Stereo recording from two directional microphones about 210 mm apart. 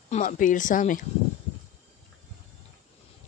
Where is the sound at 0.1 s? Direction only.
35° left (ahead or behind).